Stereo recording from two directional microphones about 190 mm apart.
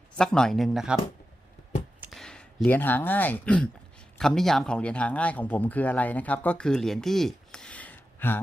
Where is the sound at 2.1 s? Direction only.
5° left (ahead or behind).